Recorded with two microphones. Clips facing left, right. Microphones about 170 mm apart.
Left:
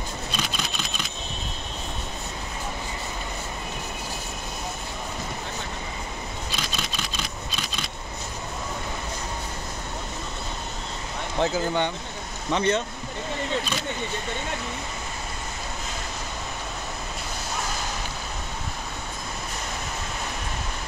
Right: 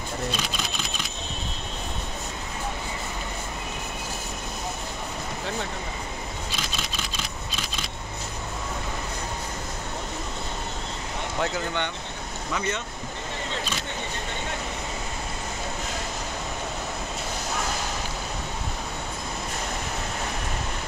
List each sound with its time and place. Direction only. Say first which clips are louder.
12.5 s speech: left 7 dB; 35° left (ahead or behind)